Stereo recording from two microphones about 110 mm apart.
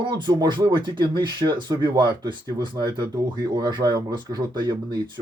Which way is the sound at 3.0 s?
30° right (ahead or behind).